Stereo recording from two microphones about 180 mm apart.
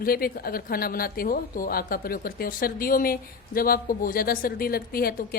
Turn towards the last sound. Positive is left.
turn(degrees=55)  # may be behind; listen again after turning